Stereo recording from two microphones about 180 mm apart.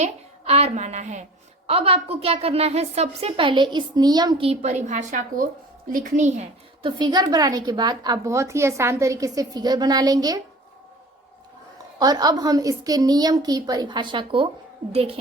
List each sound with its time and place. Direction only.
0.0 s a woman's voice: 35° right (ahead or behind)
7.0 s a woman's voice: 25° right (ahead or behind)
11.9 s a woman's voice: 20° right (ahead or behind)